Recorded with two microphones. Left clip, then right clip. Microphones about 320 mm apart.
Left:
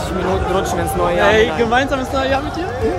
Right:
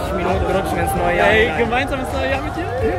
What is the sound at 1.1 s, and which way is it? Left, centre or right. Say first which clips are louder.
Speech: left 1 dB; centre.